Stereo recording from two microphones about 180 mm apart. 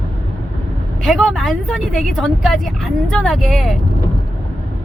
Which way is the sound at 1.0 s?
Centre (ahead or behind).